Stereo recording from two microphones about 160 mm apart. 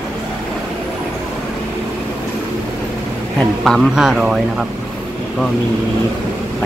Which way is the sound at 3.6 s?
Centre (ahead or behind).